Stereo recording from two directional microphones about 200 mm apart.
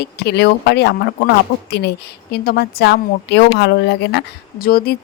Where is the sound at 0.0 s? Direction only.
55° left (ahead or behind).